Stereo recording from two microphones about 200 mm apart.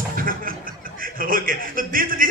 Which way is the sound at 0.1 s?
45° right (ahead or behind).